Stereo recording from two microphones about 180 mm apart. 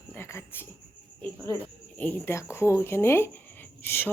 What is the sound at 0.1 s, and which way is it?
Cricket, 15° left (ahead or behind).